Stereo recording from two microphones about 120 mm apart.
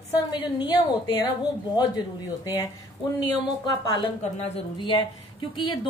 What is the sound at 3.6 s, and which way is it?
Speech, 30° left (ahead or behind).